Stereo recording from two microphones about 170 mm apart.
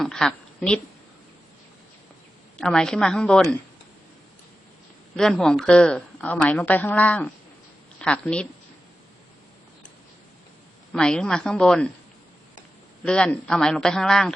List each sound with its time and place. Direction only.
0.0 s a woman's voice: 5° left (ahead or behind)
2.6 s a man's voice: 5° left (ahead or behind)
5.1 s a woman's voice: 5° left (ahead or behind)
10.9 s a man's voice: 5° left (ahead or behind)
13.1 s a man's voice: 5° left (ahead or behind)